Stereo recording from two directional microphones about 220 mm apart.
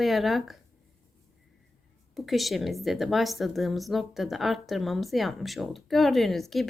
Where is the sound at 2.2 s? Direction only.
Centre (ahead or behind).